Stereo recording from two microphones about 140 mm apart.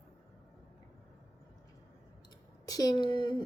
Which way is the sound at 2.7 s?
25° left (ahead or behind).